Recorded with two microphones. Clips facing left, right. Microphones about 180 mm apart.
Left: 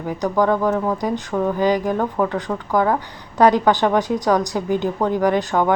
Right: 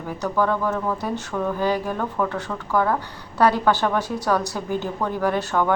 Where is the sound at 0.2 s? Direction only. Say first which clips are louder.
Left 4 dB; 15° left (ahead or behind).